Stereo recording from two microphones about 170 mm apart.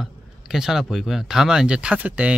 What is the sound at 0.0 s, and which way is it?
Speech, centre (ahead or behind).